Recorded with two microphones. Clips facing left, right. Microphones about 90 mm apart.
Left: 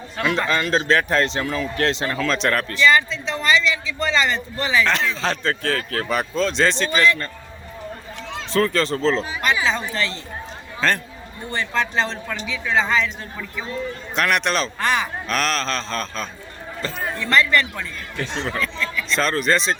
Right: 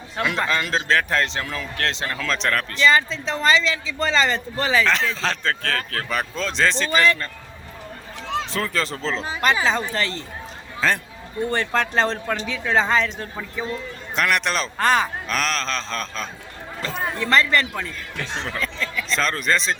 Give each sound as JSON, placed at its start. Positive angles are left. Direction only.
{"t": 0.2, "sound": "a man's voice", "side_deg": -5}
{"t": 2.8, "sound": "a man's voice", "side_deg": -35}
{"t": 4.9, "sound": "a man's voice", "side_deg": 0}
{"t": 8.5, "sound": "a man's voice", "side_deg": -5}
{"t": 9.2, "sound": "a man's voice", "side_deg": -40}
{"t": 10.8, "sound": "a man's voice", "side_deg": -5}
{"t": 11.5, "sound": "speech", "side_deg": -50}
{"t": 14.2, "sound": "a man's voice", "side_deg": 0}
{"t": 14.8, "sound": "a man's voice", "side_deg": -40}
{"t": 15.3, "sound": "a man's voice", "side_deg": 0}
{"t": 17.0, "sound": "a man's voice", "side_deg": -35}
{"t": 19.1, "sound": "a man's voice", "side_deg": 0}